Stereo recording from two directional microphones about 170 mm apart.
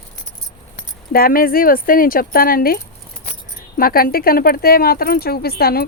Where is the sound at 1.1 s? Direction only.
60° left (ahead or behind).